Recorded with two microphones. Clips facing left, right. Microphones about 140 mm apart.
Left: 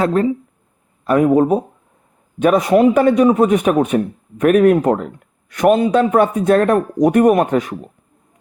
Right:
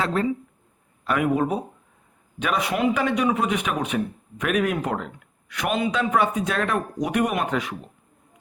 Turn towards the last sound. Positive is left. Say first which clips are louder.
# left 9 dB
turn(degrees=45)  # may be behind; listen again after turning